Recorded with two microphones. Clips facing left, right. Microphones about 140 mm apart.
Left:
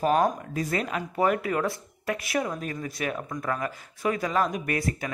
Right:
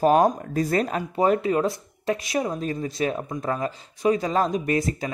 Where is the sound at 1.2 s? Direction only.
25° right (ahead or behind).